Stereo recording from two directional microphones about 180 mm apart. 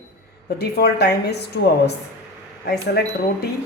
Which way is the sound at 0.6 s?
65° left (ahead or behind).